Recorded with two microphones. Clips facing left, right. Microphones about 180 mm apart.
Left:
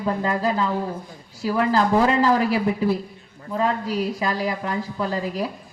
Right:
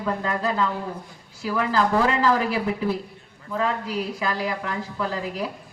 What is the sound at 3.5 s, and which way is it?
A woman's voice, 35° left (ahead or behind).